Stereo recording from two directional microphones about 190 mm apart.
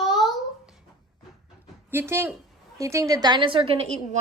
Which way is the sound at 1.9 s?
10° right (ahead or behind).